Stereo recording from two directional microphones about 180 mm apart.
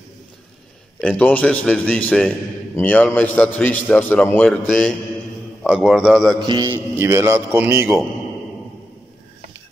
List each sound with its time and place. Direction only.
1.0 s a man's voice: 10° left (ahead or behind)
6.4 s a man's voice: 25° right (ahead or behind)